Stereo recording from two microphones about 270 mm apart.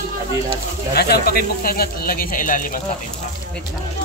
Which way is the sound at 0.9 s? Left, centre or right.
Left.